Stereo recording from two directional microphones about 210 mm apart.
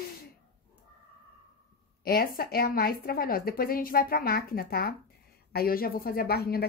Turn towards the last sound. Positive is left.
turn(degrees=45)  # may be behind; listen again after turning